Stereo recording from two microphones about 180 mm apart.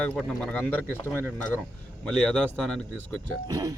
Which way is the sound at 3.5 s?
20° right (ahead or behind).